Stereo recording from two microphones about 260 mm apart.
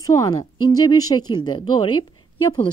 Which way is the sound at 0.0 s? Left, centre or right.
Centre.